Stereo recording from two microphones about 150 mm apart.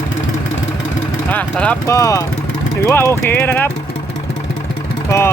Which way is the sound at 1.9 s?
20° left (ahead or behind).